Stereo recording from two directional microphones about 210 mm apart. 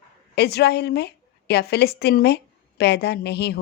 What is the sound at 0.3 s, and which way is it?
A woman's voice, 50° left (ahead or behind).